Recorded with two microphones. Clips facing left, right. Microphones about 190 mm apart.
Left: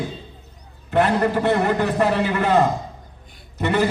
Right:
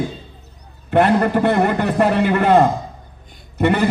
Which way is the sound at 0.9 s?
55° right (ahead or behind).